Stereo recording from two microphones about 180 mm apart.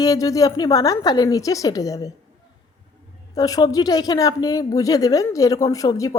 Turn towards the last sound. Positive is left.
turn(degrees=20)  # may be behind; listen again after turning